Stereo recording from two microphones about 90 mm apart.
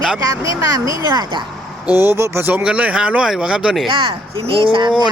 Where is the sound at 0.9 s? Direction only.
50° right (ahead or behind).